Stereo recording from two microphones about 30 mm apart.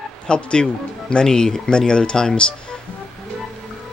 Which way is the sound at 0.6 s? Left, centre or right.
Centre.